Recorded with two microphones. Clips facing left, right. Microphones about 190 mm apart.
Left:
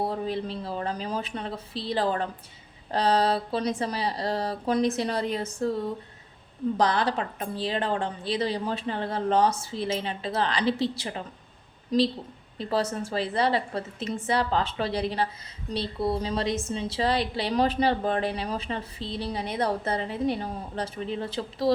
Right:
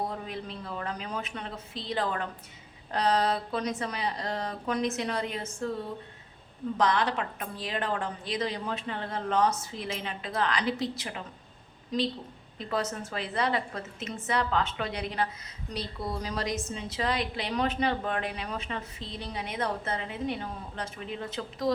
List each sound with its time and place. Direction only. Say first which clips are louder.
0.0 s a woman's voice: left 6 dB; 35° left (ahead or behind)
6.7 s a woman's voice: left 1 dB; 35° left (ahead or behind)